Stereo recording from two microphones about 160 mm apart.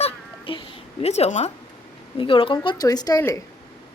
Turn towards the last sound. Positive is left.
turn(degrees=20)  # may be behind; listen again after turning